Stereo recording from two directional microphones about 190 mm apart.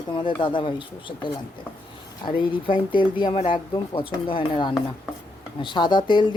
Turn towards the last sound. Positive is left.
turn(degrees=25)  # may be behind; listen again after turning